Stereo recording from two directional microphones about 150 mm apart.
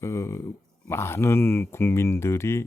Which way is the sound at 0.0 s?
20° left (ahead or behind).